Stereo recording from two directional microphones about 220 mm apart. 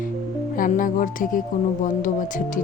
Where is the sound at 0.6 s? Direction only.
35° left (ahead or behind).